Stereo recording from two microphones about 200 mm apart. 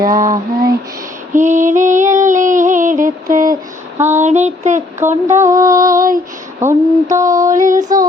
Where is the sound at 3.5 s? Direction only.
10° right (ahead or behind).